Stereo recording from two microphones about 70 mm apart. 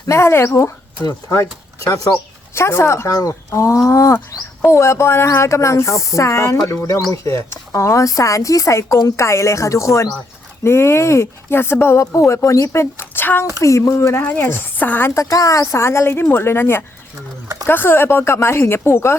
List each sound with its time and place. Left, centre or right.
0.1 s a woman's voice: left
2.6 s a woman's voice: left
13.6 s speech: left
15.1 s a woman's voice: left